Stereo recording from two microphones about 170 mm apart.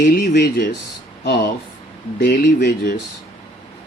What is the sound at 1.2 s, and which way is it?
Speech, 70° left (ahead or behind).